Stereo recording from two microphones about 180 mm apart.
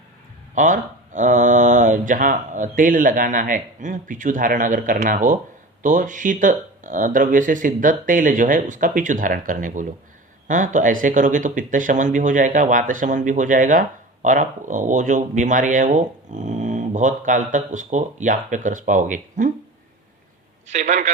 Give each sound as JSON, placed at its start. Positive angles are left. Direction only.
{"t": 0.5, "sound": "speech", "side_deg": -45}
{"t": 20.7, "sound": "speech", "side_deg": -45}